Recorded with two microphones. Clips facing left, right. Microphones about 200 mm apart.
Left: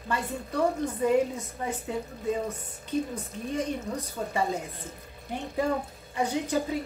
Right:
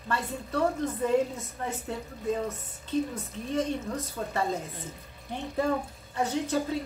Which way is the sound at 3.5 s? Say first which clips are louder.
Right 1 dB; 15° left (ahead or behind).